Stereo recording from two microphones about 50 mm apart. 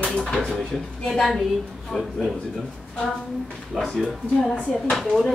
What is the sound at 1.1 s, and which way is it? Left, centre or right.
Speech, centre.